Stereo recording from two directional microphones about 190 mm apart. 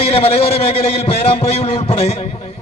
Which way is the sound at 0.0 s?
30° left (ahead or behind).